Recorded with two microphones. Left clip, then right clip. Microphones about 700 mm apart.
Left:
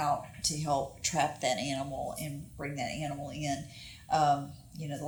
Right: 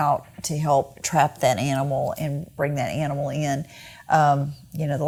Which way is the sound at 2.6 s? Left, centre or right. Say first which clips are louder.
Right 12 dB; right.